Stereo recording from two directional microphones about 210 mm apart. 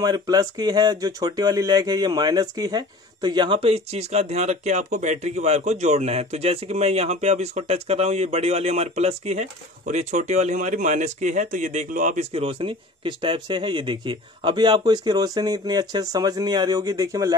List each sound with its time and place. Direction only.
0.0 s speech: 20° right (ahead or behind)